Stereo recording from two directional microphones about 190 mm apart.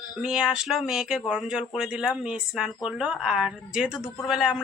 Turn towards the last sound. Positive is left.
turn(degrees=-5)  # may be behind; listen again after turning